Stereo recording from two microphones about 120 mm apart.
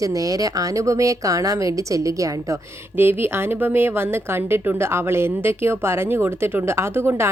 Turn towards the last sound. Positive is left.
turn(degrees=-20)  # may be behind; listen again after turning